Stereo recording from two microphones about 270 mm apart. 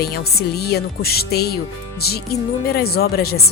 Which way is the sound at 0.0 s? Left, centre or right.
Left.